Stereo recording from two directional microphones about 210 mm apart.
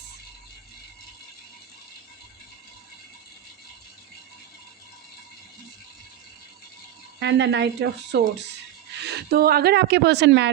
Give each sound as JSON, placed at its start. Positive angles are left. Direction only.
{"t": 7.2, "sound": "a woman's voice", "side_deg": -55}